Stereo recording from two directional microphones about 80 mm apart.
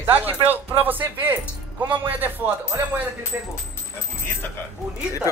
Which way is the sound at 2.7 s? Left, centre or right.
Right.